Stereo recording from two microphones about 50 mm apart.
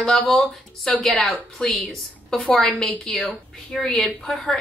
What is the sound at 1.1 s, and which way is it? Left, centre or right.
Speech, left.